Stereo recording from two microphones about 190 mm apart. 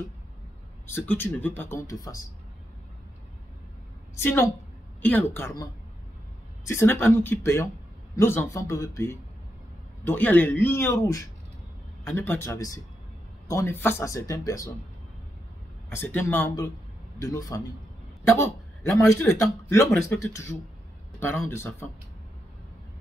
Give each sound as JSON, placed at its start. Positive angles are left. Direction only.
{"t": 0.8, "sound": "speech", "side_deg": 10}
{"t": 4.2, "sound": "speech", "side_deg": 10}
{"t": 15.9, "sound": "speech", "side_deg": 10}